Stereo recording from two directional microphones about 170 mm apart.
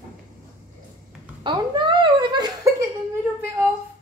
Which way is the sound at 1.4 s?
30° right (ahead or behind).